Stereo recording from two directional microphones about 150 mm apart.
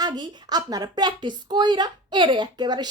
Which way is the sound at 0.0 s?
25° right (ahead or behind).